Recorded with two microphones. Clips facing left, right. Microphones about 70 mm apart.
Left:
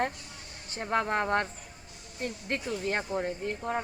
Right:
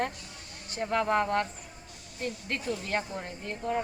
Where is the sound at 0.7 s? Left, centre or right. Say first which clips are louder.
Right 2 dB; left.